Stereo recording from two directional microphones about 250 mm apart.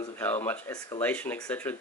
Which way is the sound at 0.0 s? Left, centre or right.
Centre.